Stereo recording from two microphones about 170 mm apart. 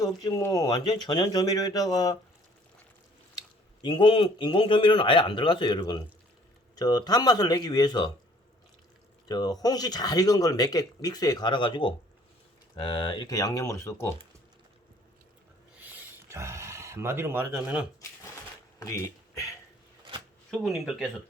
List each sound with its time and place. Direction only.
0.0 s speech: 20° left (ahead or behind)
3.8 s speech: 30° left (ahead or behind)
9.3 s speech: 20° left (ahead or behind)
15.8 s a sound: 15° right (ahead or behind)
17.5 s speech: 5° right (ahead or behind)
18.8 s speech: 20° left (ahead or behind)
20.5 s speech: centre (ahead or behind)